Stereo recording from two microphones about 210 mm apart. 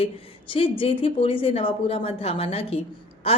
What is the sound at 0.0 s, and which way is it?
A woman's voice, 25° left (ahead or behind).